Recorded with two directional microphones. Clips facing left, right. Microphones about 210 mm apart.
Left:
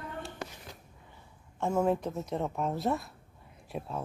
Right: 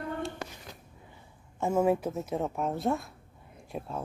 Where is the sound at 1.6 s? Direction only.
5° right (ahead or behind).